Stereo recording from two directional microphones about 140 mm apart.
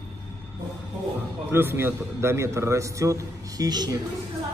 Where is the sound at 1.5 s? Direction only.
15° right (ahead or behind).